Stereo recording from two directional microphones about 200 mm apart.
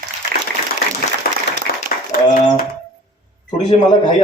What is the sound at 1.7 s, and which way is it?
Applause, 45° left (ahead or behind).